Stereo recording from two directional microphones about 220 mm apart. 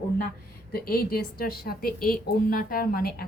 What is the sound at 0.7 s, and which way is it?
A woman's voice, 45° left (ahead or behind).